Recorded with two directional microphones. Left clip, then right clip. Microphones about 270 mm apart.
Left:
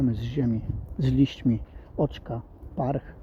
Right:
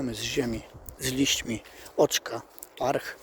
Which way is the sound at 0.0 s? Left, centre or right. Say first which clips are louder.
Even; centre.